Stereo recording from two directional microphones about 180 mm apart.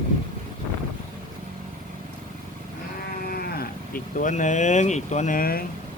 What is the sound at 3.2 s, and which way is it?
Speech, 60° left (ahead or behind).